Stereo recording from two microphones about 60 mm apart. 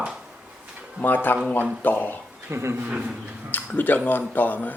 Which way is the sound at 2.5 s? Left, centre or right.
Right.